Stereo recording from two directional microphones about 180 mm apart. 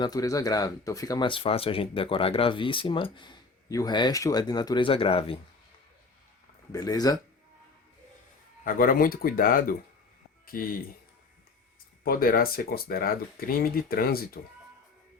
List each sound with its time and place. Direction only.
0.0 s speech: 20° left (ahead or behind)
6.7 s speech: 20° left (ahead or behind)
8.6 s speech: 50° left (ahead or behind)
12.0 s speech: 55° left (ahead or behind)